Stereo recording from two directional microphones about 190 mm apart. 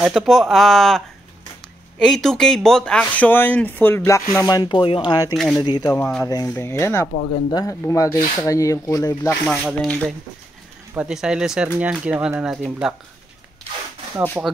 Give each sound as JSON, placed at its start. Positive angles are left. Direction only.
{"t": 0.0, "sound": "speech", "side_deg": 0}
{"t": 5.3, "sound": "speech", "side_deg": 0}
{"t": 5.6, "sound": "speech", "side_deg": 20}
{"t": 9.5, "sound": "speech", "side_deg": 0}
{"t": 14.4, "sound": "speech", "side_deg": -10}